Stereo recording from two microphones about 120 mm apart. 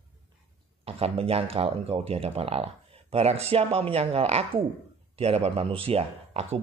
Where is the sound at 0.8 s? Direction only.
55° right (ahead or behind).